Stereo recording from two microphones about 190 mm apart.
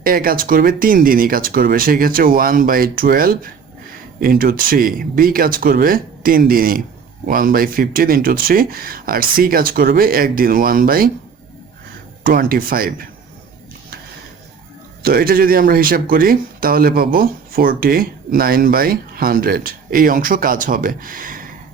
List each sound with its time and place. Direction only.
0.0 s speech: 50° right (ahead or behind)
12.2 s speech: 50° right (ahead or behind)
15.0 s speech: 50° right (ahead or behind)